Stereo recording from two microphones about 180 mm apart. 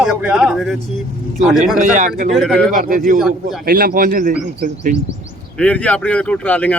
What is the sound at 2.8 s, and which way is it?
Speech, 50° right (ahead or behind).